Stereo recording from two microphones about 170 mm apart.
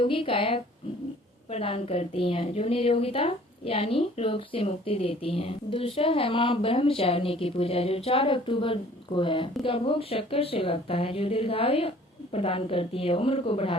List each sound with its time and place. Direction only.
0.0 s a woman's voice: 30° left (ahead or behind)